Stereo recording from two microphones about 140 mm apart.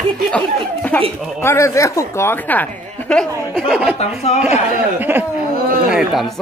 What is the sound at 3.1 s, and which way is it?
Speech, centre (ahead or behind).